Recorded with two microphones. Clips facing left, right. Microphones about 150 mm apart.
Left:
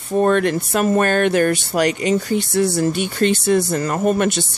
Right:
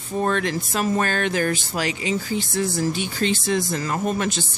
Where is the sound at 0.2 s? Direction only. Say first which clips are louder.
Left 6 dB; 55° left (ahead or behind).